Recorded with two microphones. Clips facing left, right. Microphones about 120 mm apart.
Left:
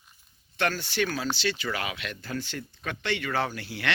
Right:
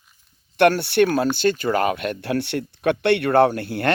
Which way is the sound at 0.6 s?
65° right (ahead or behind).